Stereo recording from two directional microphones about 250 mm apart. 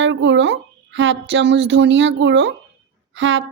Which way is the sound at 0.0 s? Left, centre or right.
Right.